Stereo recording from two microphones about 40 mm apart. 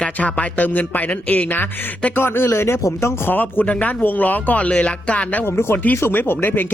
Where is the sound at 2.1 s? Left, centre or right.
Left.